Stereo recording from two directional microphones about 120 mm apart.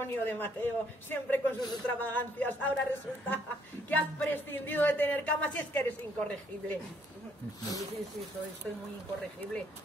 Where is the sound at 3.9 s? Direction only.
15° left (ahead or behind).